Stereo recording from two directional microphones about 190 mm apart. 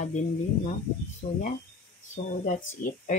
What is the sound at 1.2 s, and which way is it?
Speech, 35° left (ahead or behind).